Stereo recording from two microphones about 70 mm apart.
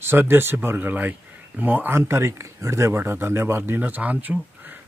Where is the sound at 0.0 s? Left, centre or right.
Right.